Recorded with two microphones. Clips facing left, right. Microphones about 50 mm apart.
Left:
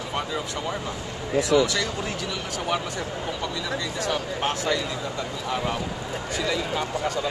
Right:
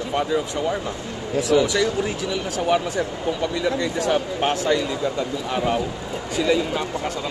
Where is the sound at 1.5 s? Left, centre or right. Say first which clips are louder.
Right 3 dB; centre.